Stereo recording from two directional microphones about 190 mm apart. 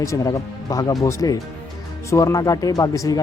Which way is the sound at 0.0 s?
15° left (ahead or behind).